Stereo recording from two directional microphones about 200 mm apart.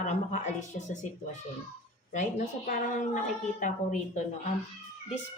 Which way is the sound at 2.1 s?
40° left (ahead or behind).